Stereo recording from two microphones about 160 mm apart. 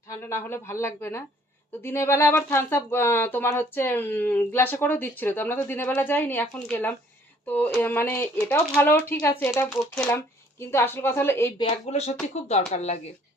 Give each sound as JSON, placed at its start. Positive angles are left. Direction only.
{"t": 0.1, "sound": "speech", "side_deg": 15}
{"t": 10.6, "sound": "speech", "side_deg": 15}
{"t": 11.9, "sound": "speech", "side_deg": 45}